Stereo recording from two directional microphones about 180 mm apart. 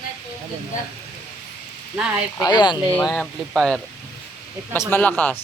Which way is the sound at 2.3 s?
20° left (ahead or behind).